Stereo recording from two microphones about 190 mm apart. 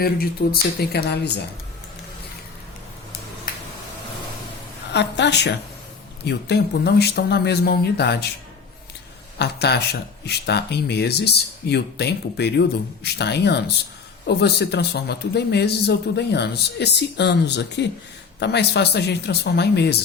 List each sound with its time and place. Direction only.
0.0 s speech: 55° left (ahead or behind)
4.9 s speech: 65° left (ahead or behind)
9.4 s speech: 60° left (ahead or behind)